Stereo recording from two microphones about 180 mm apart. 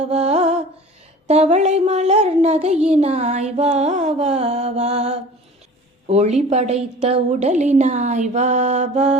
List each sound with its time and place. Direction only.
0.0 s music: 35° right (ahead or behind)
1.3 s a woman's voice: 40° right (ahead or behind)